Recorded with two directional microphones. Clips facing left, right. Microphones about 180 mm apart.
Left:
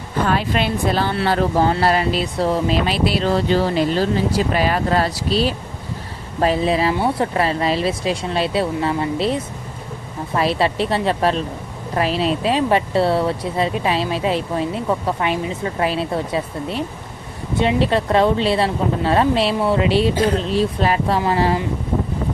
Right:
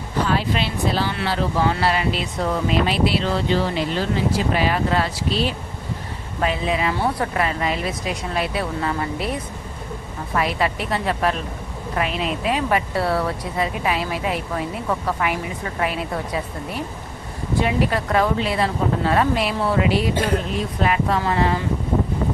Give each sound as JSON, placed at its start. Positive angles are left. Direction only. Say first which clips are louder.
{"t": 0.3, "sound": "speech", "louder": "left 3 dB", "side_deg": 50}